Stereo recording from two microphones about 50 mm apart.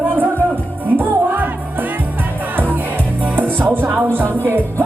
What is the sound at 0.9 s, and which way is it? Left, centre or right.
Music, right.